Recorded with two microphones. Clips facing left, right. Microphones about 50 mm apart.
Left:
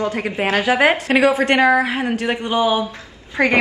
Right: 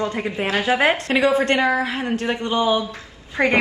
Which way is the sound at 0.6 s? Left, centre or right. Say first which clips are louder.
Left 2 dB; centre.